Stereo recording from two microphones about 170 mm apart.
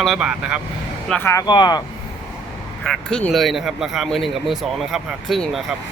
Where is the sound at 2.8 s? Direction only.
5° left (ahead or behind).